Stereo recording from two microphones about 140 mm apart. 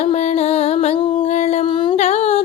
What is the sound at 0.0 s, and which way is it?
Music, 50° left (ahead or behind).